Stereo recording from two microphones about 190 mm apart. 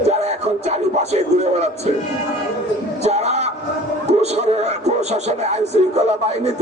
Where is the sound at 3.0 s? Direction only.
35° right (ahead or behind).